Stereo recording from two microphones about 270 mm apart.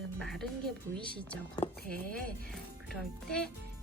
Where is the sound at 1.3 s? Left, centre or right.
Centre.